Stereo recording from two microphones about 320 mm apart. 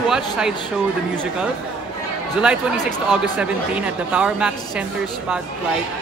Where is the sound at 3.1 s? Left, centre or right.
Centre.